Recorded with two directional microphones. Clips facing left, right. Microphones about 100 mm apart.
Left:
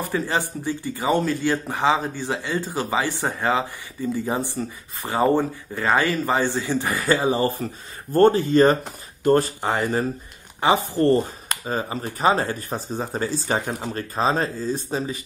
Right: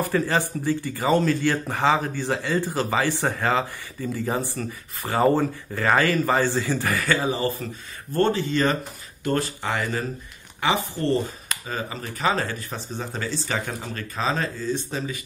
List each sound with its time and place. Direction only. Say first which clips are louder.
0.0 s speech: right 1 dB; 15° left (ahead or behind)
7.0 s speech: left 7 dB; 30° left (ahead or behind)